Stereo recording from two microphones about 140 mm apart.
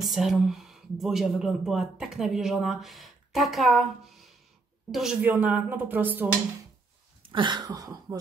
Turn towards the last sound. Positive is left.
turn(degrees=-30)  # may be behind; listen again after turning